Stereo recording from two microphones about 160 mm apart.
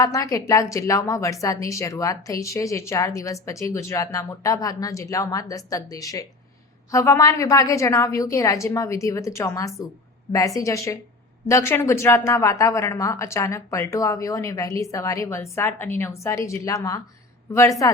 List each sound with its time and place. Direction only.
0.0 s a woman's voice: 20° left (ahead or behind)